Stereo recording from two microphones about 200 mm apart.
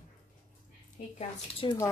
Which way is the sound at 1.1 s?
25° left (ahead or behind).